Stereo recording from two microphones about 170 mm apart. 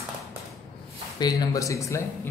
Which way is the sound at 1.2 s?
25° left (ahead or behind).